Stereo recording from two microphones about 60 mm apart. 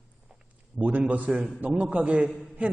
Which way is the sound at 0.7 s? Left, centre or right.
Right.